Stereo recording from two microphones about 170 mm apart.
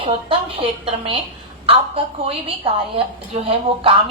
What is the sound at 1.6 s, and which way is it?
Speech, 30° right (ahead or behind).